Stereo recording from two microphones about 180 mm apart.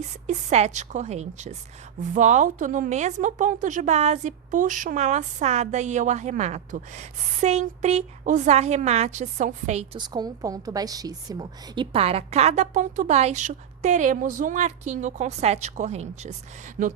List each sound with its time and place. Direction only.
0.3 s a woman's voice: 40° right (ahead or behind)
10.0 s a woman's voice: 20° right (ahead or behind); by 16.3 s 40° right (ahead or behind)
16.8 s speech: 50° right (ahead or behind)